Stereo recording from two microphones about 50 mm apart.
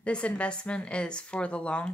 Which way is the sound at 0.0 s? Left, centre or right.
Left.